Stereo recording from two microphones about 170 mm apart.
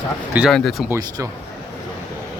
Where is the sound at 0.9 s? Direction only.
20° right (ahead or behind).